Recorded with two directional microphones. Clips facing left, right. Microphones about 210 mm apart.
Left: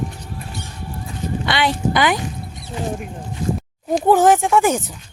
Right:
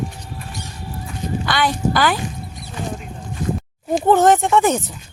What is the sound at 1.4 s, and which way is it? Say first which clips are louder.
Speech: even; 25° left (ahead or behind).